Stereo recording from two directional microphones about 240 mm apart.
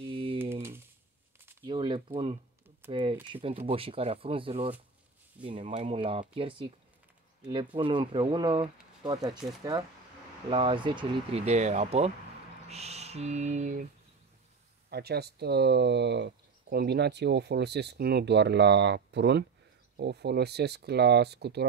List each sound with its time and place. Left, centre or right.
0.0 s typing: right
0.4 s typing: centre
1.4 s a sound: centre
2.9 s speech: right
14.9 s speech: right